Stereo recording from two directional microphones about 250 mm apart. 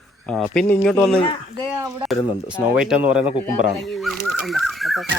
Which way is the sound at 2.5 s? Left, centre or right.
Centre.